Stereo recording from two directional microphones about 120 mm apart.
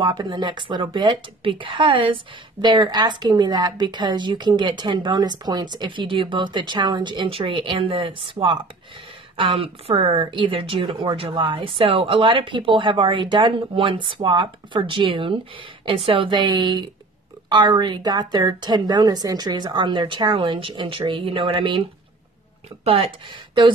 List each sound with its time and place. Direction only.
0.0 s speech: 40° right (ahead or behind)
22.8 s speech: 55° right (ahead or behind)